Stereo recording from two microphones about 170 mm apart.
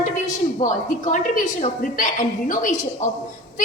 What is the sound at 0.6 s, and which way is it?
A woman's voice, 50° left (ahead or behind).